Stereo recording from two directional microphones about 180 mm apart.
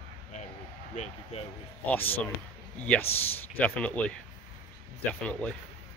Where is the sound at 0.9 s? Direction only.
40° left (ahead or behind).